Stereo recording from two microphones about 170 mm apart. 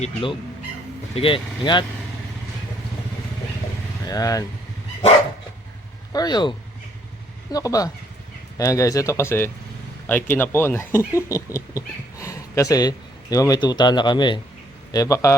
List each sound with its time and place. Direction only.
0.0 s speech: 30° left (ahead or behind)
4.0 s speech: 20° left (ahead or behind)
6.1 s speech: 25° left (ahead or behind)
7.5 s speech: 20° left (ahead or behind)